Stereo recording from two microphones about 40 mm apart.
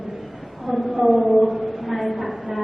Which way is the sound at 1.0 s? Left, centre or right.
Centre.